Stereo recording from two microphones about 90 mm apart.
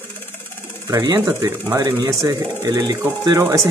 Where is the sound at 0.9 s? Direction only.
45° right (ahead or behind).